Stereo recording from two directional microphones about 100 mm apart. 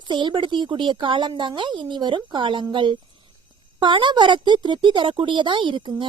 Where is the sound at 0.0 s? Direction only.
50° right (ahead or behind).